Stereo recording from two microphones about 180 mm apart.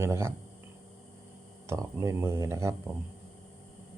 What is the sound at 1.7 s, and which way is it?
Speech, 15° right (ahead or behind).